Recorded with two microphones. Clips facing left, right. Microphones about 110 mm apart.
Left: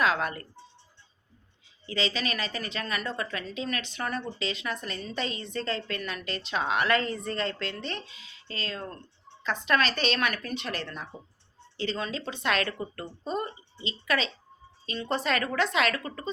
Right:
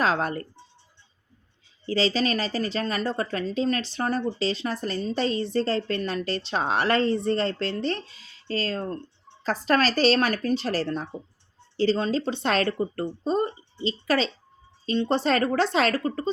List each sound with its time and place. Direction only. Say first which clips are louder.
0.0 s speech: right 3 dB; 35° right (ahead or behind)
1.9 s speech: right 7 dB; 35° right (ahead or behind)